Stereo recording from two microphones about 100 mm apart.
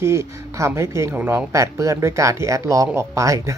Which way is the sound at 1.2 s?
25° right (ahead or behind).